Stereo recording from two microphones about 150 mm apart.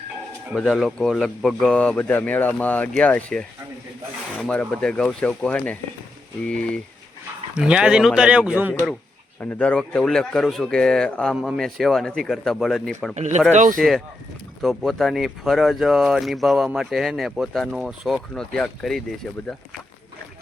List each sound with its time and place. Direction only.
0.5 s speech: centre (ahead or behind)
7.5 s speech: 5° right (ahead or behind)
9.4 s speech: 10° left (ahead or behind)
13.1 s speech: 50° right (ahead or behind)
13.7 s speech: centre (ahead or behind)